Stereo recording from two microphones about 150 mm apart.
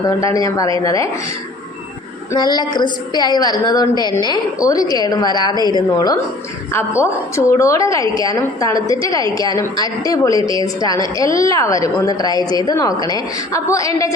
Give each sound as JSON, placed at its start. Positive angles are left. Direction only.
{"t": 0.2, "sound": "a woman's voice", "side_deg": 20}
{"t": 2.3, "sound": "a woman's voice", "side_deg": 30}